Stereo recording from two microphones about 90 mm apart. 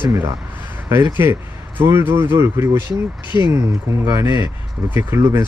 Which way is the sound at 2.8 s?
60° left (ahead or behind).